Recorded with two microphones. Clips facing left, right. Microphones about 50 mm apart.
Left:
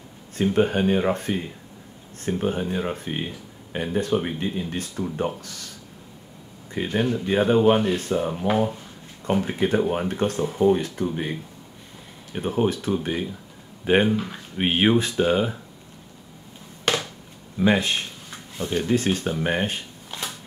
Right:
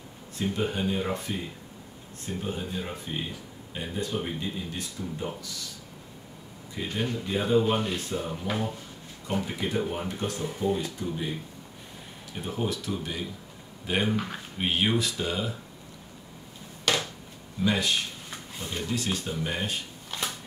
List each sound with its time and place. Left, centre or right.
0.4 s speech: left
6.7 s speech: left
14.1 s speech: centre
14.6 s speech: left
16.9 s a sound: left
17.6 s speech: left